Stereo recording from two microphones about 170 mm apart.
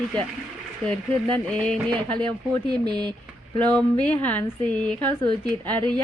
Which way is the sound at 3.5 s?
10° left (ahead or behind).